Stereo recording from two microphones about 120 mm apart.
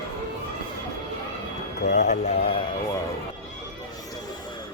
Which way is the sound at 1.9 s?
70° left (ahead or behind).